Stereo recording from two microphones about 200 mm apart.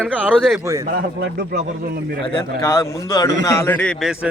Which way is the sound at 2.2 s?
15° left (ahead or behind).